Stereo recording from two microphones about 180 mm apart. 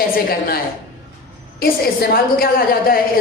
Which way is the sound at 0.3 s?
60° left (ahead or behind).